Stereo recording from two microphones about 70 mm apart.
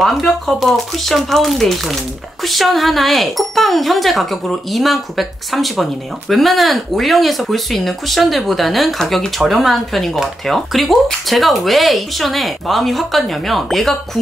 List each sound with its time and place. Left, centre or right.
0.0 s speech: centre